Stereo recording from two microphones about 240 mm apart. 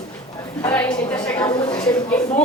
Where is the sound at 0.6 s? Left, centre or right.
Centre.